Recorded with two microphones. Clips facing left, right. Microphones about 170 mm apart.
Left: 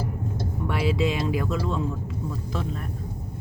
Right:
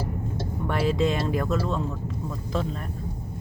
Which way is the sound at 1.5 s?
45° right (ahead or behind).